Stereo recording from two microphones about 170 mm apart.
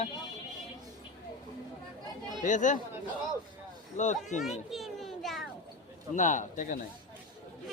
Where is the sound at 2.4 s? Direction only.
45° left (ahead or behind).